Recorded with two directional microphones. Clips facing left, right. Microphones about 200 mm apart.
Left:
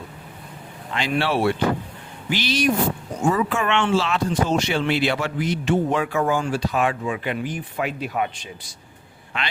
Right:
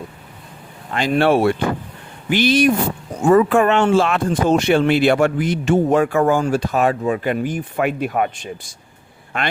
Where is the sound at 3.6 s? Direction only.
40° right (ahead or behind).